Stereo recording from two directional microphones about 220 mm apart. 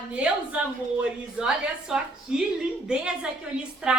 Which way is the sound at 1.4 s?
5° right (ahead or behind).